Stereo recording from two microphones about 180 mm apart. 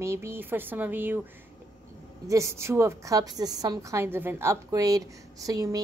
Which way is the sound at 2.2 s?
15° right (ahead or behind).